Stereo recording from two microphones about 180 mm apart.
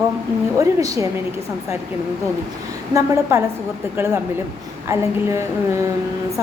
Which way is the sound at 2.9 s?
15° right (ahead or behind).